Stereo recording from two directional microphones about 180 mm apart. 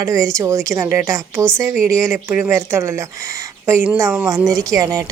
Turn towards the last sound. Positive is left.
turn(degrees=-20)  # may be behind; listen again after turning